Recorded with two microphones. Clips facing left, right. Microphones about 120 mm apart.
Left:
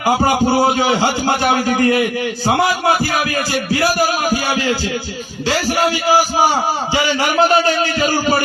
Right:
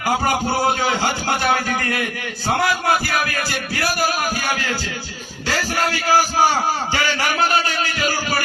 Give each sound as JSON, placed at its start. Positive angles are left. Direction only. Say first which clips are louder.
{"t": 0.0, "sound": "a man's voice", "louder": "left 5 dB", "side_deg": 15}
{"t": 7.3, "sound": "a man's voice", "louder": "left 9 dB", "side_deg": 25}